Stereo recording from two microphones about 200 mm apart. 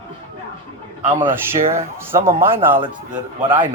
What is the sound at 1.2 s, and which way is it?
Speech, 10° right (ahead or behind).